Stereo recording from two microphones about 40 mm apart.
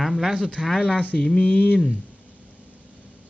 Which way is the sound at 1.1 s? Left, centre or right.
Left.